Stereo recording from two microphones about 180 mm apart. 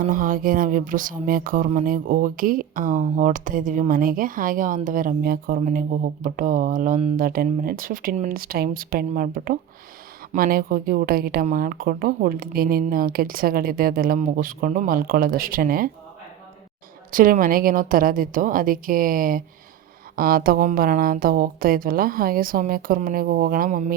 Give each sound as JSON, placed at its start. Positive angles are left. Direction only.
{"t": 0.0, "sound": "speech", "side_deg": -50}
{"t": 7.2, "sound": "a woman's voice", "side_deg": -55}
{"t": 17.1, "sound": "speech", "side_deg": -50}